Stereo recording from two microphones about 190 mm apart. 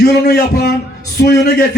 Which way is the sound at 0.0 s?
55° left (ahead or behind).